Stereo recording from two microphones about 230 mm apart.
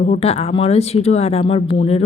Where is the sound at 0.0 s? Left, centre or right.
Left.